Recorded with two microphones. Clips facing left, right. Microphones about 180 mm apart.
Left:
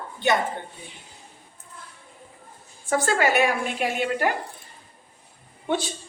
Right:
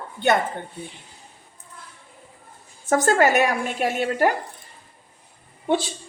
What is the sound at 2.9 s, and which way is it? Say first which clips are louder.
A woman's voice: right 4 dB; 45° right (ahead or behind).